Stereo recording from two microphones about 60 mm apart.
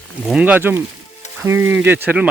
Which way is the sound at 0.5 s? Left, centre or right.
Right.